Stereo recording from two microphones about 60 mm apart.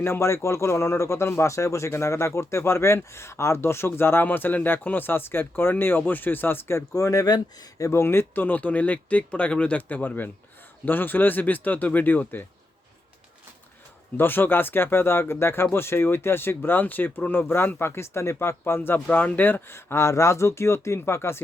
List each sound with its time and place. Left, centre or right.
0.0 s a man's voice: left
6.9 s speech: left
7.9 s speech: left
8.4 s speech: left
14.2 s speech: left
19.0 s a man's voice: left